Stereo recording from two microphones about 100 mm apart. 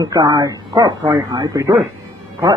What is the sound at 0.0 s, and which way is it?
Speech, 45° right (ahead or behind).